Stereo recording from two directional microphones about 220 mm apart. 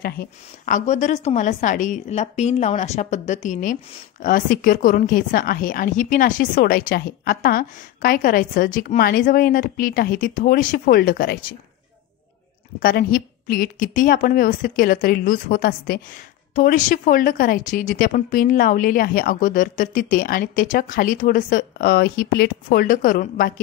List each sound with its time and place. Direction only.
0.0 s speech: 40° left (ahead or behind)
12.8 s speech: 40° left (ahead or behind)